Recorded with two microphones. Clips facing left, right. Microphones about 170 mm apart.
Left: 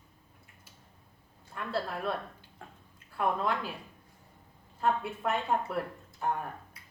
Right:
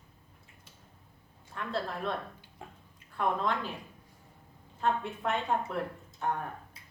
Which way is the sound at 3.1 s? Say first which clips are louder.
Even; 10° left (ahead or behind).